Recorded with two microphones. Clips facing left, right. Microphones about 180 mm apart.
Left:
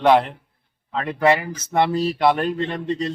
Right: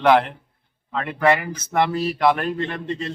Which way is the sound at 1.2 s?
30° left (ahead or behind).